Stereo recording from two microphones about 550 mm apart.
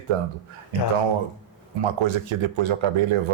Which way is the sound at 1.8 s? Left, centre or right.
Right.